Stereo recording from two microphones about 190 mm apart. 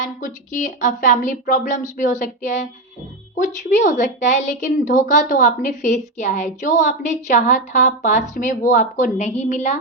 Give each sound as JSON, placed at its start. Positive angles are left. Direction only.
{"t": 0.2, "sound": "a woman's voice", "side_deg": 45}